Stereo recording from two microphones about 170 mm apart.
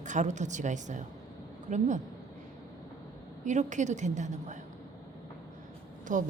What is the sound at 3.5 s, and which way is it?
A woman's voice, 45° right (ahead or behind).